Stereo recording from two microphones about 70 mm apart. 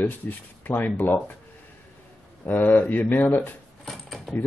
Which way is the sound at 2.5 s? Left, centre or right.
Left.